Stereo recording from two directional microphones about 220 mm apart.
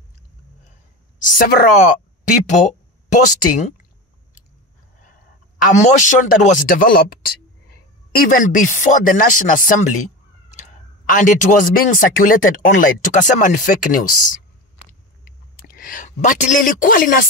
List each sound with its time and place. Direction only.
1.2 s speech: 35° left (ahead or behind)
5.6 s speech: 35° left (ahead or behind)
8.1 s speech: 40° left (ahead or behind)
11.1 s speech: 35° left (ahead or behind)